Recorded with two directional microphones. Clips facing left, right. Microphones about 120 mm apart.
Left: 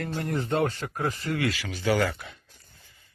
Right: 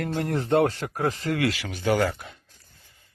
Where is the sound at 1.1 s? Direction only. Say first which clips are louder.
Right 3 dB; 80° right; by 1.9 s 55° right (ahead or behind).